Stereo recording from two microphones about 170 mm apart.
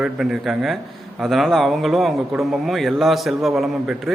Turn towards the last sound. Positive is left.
turn(degrees=0)  # may be behind; listen again after turning